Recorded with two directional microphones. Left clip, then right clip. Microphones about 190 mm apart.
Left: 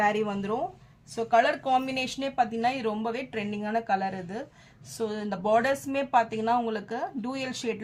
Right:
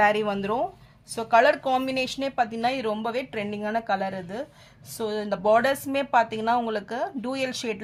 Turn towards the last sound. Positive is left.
turn(degrees=-35)  # may be behind; listen again after turning